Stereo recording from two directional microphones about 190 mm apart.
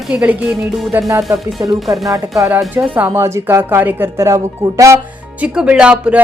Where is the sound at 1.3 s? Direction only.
10° right (ahead or behind).